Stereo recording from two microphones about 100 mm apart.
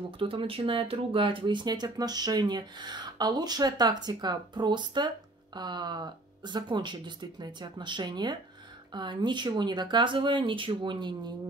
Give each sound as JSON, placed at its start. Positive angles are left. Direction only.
{"t": 0.2, "sound": "speech", "side_deg": -60}